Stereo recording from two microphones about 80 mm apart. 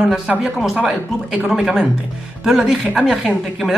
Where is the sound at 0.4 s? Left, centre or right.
Centre.